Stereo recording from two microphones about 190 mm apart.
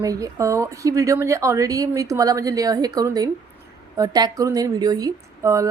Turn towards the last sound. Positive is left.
turn(degrees=-15)  # may be behind; listen again after turning